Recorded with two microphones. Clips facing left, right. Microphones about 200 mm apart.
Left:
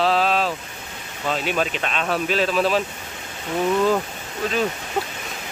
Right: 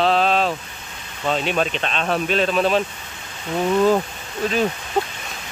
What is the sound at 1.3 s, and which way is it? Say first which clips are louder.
Speech: right 2 dB; 5° left (ahead or behind).